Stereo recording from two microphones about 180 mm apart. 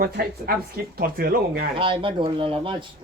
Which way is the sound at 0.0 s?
55° right (ahead or behind).